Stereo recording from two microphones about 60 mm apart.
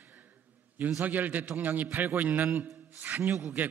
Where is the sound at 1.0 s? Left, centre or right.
Right.